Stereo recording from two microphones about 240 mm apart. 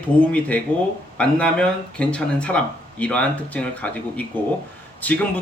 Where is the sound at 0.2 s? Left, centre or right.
Centre.